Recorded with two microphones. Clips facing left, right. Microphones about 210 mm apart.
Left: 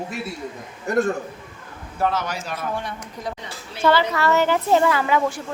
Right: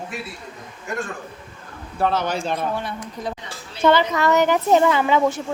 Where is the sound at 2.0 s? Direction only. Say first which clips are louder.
Right 2 dB; 30° right (ahead or behind).